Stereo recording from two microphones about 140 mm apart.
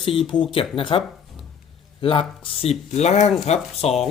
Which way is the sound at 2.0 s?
40° left (ahead or behind).